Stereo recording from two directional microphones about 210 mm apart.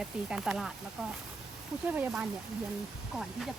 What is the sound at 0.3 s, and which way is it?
Speech, 5° right (ahead or behind).